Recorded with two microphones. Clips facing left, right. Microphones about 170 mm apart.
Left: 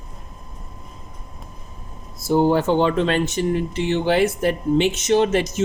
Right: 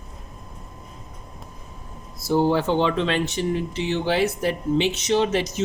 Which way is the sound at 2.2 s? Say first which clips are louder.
Left 3 dB; 50° left (ahead or behind).